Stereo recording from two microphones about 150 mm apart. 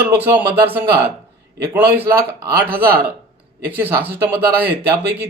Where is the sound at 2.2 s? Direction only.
90° right.